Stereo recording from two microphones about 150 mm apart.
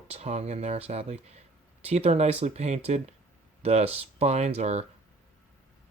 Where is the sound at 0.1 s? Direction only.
45° right (ahead or behind).